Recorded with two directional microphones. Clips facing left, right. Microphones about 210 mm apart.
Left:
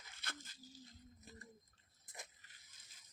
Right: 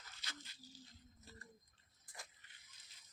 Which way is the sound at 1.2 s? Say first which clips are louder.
Left 1 dB; 20° left (ahead or behind).